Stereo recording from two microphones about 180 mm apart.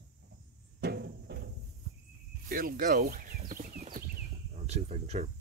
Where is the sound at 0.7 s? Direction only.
65° right (ahead or behind).